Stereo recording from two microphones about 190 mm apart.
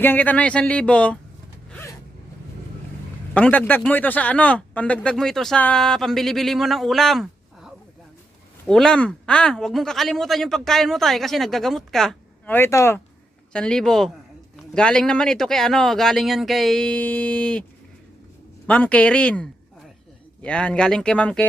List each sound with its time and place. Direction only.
0.0 s speech: 10° left (ahead or behind)
1.7 s gasp: 15° left (ahead or behind)
3.3 s speech: 10° left (ahead or behind)
18.7 s speech: 5° left (ahead or behind)